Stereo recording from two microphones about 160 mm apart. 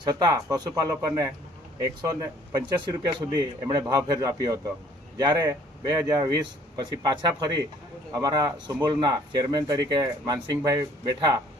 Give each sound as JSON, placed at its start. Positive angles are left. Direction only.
{"t": 0.0, "sound": "speech", "side_deg": -25}